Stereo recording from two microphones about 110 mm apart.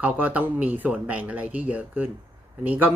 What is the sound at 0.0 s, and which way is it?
Speech, 15° right (ahead or behind).